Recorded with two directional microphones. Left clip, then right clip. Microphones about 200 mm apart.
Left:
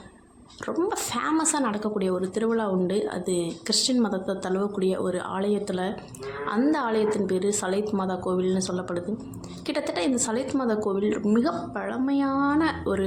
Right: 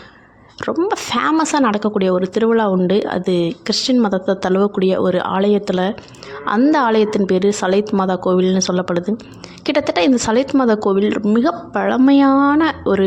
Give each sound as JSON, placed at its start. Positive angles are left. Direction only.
{"t": 0.6, "sound": "a woman's voice", "side_deg": -40}